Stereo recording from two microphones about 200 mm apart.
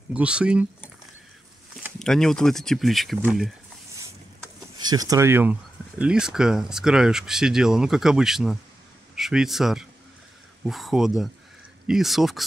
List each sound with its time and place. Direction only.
0.1 s speech: 5° right (ahead or behind)
2.0 s speech: centre (ahead or behind)
4.7 s speech: 20° right (ahead or behind); by 12.4 s centre (ahead or behind)